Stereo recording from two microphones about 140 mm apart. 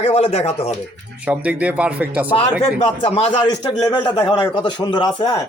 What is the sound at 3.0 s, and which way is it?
Speech, 40° left (ahead or behind).